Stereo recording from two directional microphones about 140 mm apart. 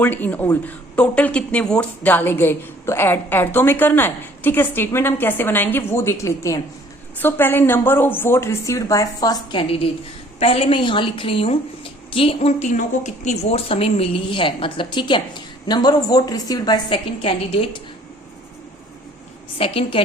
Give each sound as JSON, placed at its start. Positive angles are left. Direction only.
{"t": 0.0, "sound": "speech", "side_deg": 10}
{"t": 9.6, "sound": "a woman's voice", "side_deg": 40}
{"t": 19.5, "sound": "a woman's voice", "side_deg": 40}